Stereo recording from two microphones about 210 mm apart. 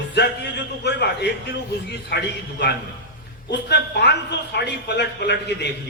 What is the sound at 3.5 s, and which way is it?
A man's voice, 55° left (ahead or behind).